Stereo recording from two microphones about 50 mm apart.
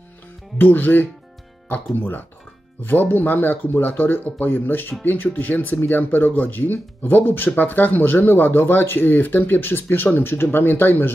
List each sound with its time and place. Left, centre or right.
0.6 s speech: left